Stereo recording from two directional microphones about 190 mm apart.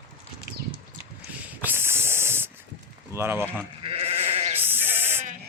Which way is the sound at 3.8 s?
30° right (ahead or behind).